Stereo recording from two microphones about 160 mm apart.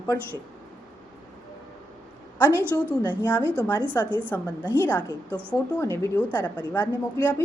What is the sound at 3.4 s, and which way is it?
Speech, 15° right (ahead or behind).